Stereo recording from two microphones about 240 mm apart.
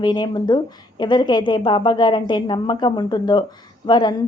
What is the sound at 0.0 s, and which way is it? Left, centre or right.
A woman's voice, centre.